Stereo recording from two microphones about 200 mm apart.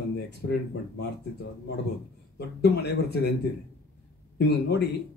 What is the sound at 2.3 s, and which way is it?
Speech, 55° left (ahead or behind).